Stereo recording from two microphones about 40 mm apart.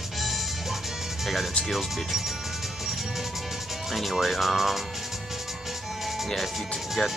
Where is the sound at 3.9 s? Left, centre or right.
Centre.